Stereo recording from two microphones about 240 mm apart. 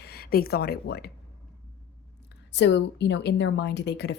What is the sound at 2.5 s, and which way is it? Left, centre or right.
Speech, left.